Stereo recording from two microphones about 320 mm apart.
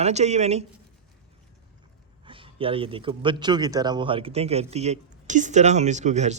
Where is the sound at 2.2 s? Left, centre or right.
Centre.